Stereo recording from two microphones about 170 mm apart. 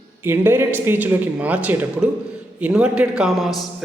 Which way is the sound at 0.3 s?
15° right (ahead or behind).